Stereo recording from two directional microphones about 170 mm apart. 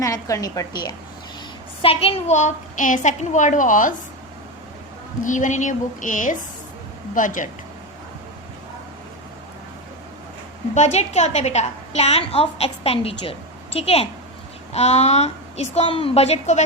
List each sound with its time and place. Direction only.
0.0 s a woman's voice: 20° left (ahead or behind)
1.8 s a woman's voice: 35° left (ahead or behind); by 3.9 s 50° left (ahead or behind)
5.2 s a woman's voice: 50° left (ahead or behind)
10.8 s a woman's voice: 40° left (ahead or behind)